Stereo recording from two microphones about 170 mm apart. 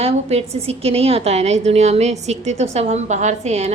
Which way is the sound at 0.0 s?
35° right (ahead or behind).